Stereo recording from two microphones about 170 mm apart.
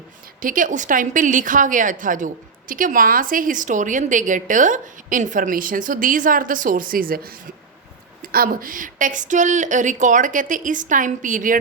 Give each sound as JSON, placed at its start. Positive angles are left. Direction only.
{"t": 0.4, "sound": "a woman's voice", "side_deg": -50}